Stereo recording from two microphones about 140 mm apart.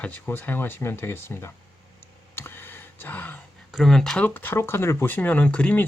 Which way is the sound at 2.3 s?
15° left (ahead or behind).